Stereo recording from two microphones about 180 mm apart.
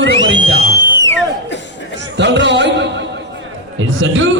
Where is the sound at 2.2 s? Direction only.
75° right (ahead or behind).